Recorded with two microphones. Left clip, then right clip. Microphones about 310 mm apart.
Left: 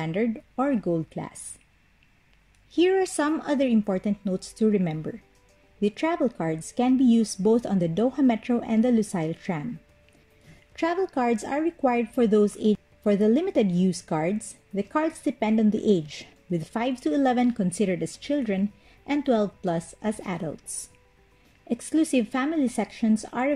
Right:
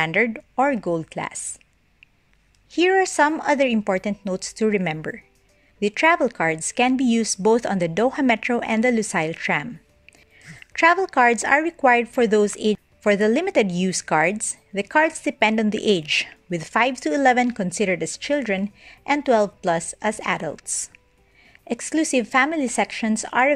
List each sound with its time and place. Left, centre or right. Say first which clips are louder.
0.0 s a woman's voice: right 8 dB; right
0.8 s speech: right 4 dB; right
2.7 s a woman's voice: right 4 dB; right
10.7 s a woman's voice: right 9 dB; right